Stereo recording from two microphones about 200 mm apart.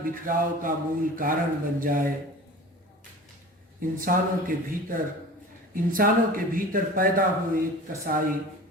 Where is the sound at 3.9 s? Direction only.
45° right (ahead or behind).